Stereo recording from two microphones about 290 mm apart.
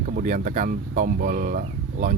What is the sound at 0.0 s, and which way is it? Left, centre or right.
Speech, right.